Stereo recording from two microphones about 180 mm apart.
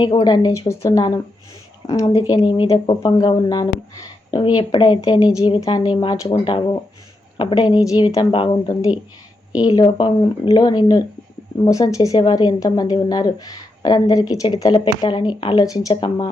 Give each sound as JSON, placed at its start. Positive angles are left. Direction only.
{"t": 0.0, "sound": "speech", "side_deg": 25}